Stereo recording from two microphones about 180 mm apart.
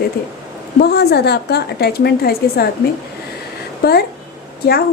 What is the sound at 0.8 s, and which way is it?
A woman's voice, 60° left (ahead or behind).